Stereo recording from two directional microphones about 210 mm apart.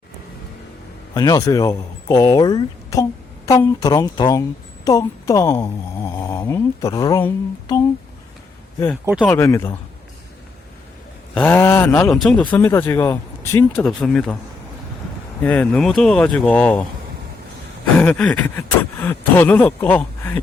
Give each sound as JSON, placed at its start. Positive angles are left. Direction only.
{"t": 1.1, "sound": "speech", "side_deg": 15}
{"t": 9.2, "sound": "speech", "side_deg": 10}
{"t": 11.3, "sound": "speech", "side_deg": 10}
{"t": 13.7, "sound": "speech", "side_deg": 0}
{"t": 15.4, "sound": "speech", "side_deg": 5}
{"t": 18.0, "sound": "speech", "side_deg": 5}